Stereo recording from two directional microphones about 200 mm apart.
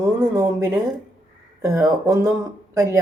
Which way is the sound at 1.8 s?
15° right (ahead or behind).